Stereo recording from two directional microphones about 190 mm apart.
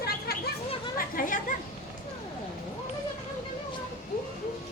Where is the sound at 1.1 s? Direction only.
45° left (ahead or behind).